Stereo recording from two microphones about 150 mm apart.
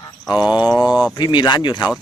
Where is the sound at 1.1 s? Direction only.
30° left (ahead or behind).